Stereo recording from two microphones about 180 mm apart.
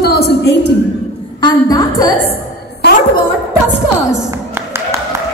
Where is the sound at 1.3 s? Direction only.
20° left (ahead or behind).